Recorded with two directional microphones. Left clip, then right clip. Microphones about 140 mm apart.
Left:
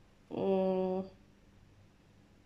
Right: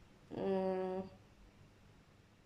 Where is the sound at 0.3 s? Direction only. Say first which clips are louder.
Left 6 dB; 15° left (ahead or behind).